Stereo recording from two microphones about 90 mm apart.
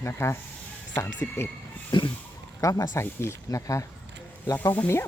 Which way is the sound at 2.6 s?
40° left (ahead or behind).